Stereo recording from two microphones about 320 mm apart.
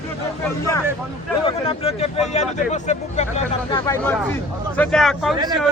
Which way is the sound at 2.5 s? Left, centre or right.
Left.